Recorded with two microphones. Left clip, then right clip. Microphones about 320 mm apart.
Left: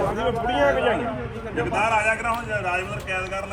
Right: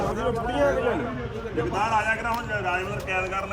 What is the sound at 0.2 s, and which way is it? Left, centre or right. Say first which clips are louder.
Speech: left 2 dB; centre.